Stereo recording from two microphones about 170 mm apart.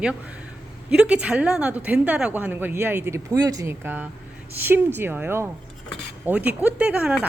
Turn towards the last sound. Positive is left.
turn(degrees=-5)  # may be behind; listen again after turning